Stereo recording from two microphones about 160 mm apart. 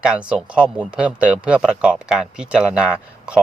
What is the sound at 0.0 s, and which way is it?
Speech, 5° right (ahead or behind).